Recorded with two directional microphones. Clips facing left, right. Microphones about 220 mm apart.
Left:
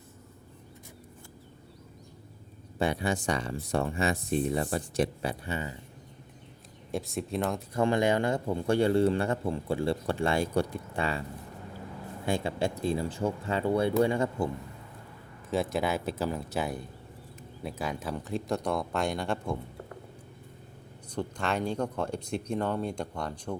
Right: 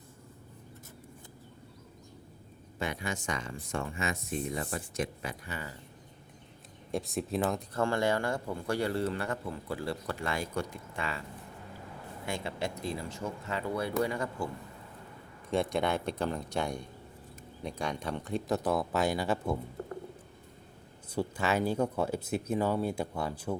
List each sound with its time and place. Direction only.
2.7 s speech: 35° left (ahead or behind)
6.9 s speech: centre (ahead or behind)
7.7 s speech: 15° left (ahead or behind); by 11.2 s 30° left (ahead or behind)
12.2 s speech: 30° left (ahead or behind)
15.4 s speech: centre (ahead or behind)
21.2 s speech: 5° right (ahead or behind)